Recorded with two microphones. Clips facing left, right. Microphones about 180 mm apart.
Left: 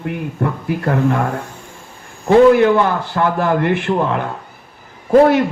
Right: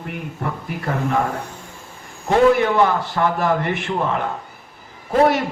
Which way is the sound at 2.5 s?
60° left (ahead or behind).